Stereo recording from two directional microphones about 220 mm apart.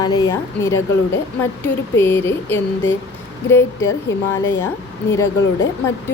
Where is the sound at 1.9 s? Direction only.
10° left (ahead or behind).